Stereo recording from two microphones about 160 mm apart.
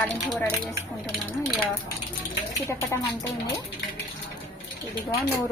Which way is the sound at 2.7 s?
15° left (ahead or behind).